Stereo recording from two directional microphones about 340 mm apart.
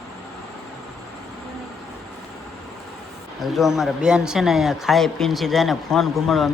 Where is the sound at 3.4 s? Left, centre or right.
Centre.